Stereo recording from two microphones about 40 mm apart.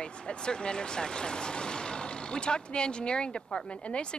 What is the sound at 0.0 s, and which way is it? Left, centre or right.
Speech, left.